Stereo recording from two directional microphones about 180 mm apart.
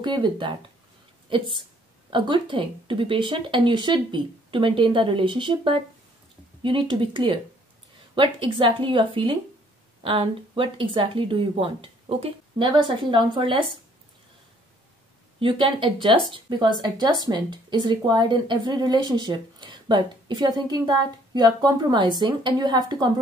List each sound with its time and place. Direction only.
0.0 s a woman's voice: 25° right (ahead or behind)
15.3 s a woman's voice: 30° right (ahead or behind)